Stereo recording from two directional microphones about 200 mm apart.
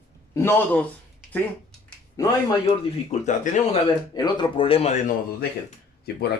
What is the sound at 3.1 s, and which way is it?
Speech, 35° left (ahead or behind).